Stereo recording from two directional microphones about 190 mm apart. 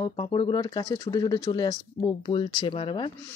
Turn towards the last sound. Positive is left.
turn(degrees=25)  # may be behind; listen again after turning